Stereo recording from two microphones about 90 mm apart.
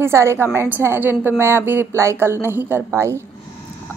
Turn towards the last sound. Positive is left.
turn(degrees=-30)  # may be behind; listen again after turning